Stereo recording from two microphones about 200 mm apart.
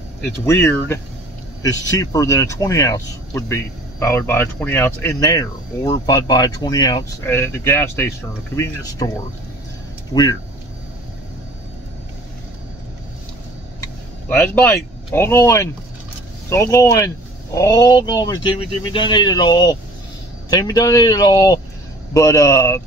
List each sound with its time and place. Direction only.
0.5 s speech: 10° left (ahead or behind)
14.3 s speech: 10° left (ahead or behind)